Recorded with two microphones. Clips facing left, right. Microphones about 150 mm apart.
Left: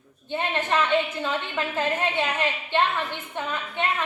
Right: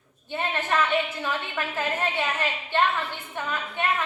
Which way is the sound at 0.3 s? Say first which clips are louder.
Left 2 dB; 20° left (ahead or behind).